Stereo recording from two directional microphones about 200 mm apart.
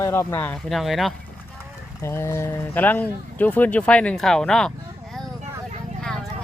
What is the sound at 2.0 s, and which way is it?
Speech, 15° left (ahead or behind).